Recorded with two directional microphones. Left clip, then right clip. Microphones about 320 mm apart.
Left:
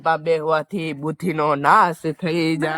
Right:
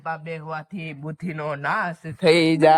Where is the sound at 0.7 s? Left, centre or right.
Centre.